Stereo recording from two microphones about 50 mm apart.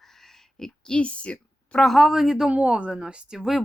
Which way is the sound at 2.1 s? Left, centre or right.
Centre.